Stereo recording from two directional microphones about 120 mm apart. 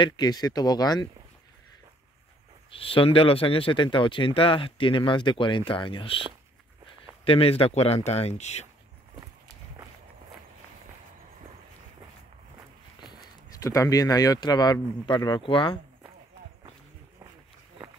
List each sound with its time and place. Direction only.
0.0 s speech: 35° left (ahead or behind)
2.7 s speech: 50° left (ahead or behind)
7.2 s speech: 55° left (ahead or behind)
13.6 s speech: 25° left (ahead or behind); by 15.8 s 45° left (ahead or behind)